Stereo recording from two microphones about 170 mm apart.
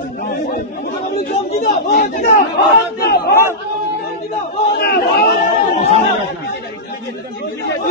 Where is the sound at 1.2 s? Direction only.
35° left (ahead or behind).